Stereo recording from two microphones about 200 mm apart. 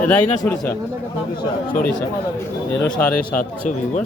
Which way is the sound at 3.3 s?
40° left (ahead or behind).